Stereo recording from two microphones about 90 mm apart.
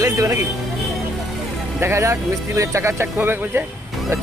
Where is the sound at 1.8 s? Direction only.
30° right (ahead or behind).